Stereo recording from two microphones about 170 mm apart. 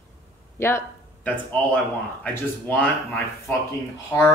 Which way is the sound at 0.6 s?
15° left (ahead or behind).